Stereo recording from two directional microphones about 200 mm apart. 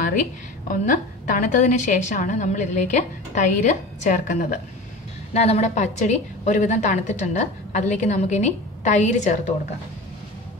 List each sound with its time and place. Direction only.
0.7 s a woman's voice: 40° left (ahead or behind)